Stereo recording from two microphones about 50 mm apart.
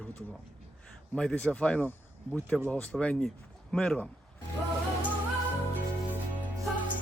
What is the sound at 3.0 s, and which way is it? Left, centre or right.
Speech, left.